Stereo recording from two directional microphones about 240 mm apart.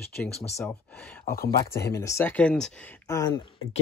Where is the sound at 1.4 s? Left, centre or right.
Left.